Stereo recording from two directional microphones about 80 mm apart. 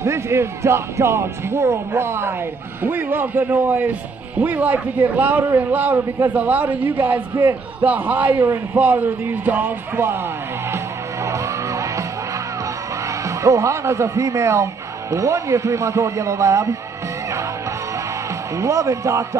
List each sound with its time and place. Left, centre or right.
0.0 s a man's voice: right
11.2 s music: right
13.0 s a man's voice: right
18.6 s a man's voice: right